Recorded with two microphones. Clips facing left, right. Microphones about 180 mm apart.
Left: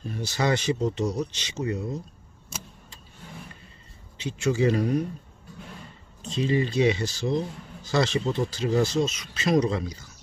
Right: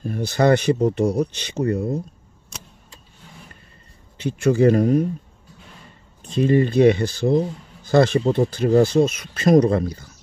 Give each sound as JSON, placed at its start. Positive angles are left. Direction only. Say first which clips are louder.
{"t": 0.0, "sound": "speech", "louder": "right 8 dB", "side_deg": -55}
{"t": 4.2, "sound": "speech", "louder": "right 7 dB", "side_deg": -55}
{"t": 6.2, "sound": "speech", "louder": "right 7 dB", "side_deg": -55}